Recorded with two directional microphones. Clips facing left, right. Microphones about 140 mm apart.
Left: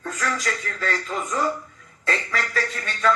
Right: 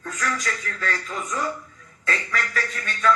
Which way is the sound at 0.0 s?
35° left (ahead or behind).